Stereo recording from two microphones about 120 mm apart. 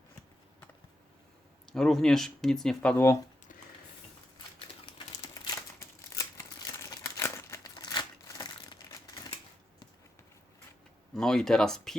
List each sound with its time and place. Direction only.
1.7 s speech: 5° left (ahead or behind)
6.1 s crumpling: 25° left (ahead or behind)
11.1 s speech: 5° left (ahead or behind)